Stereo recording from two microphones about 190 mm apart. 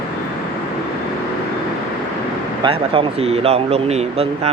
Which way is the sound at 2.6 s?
30° right (ahead or behind).